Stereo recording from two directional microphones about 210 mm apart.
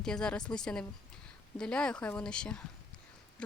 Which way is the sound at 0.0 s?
5° left (ahead or behind).